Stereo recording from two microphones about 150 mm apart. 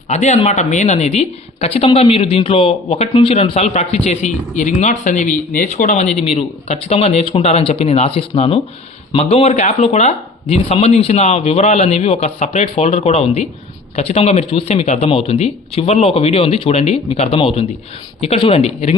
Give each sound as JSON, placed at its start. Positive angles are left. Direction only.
{"t": 0.1, "sound": "speech", "side_deg": 50}